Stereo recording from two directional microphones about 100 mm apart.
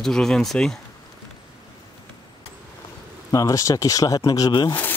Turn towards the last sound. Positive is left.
turn(degrees=45)  # may be behind; listen again after turning